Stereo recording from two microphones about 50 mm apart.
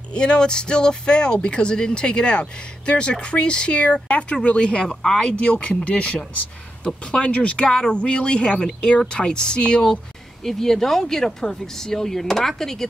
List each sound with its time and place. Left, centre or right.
0.1 s speech: centre